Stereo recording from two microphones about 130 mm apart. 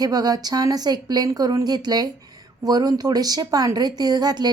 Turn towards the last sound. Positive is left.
turn(degrees=-30)  # may be behind; listen again after turning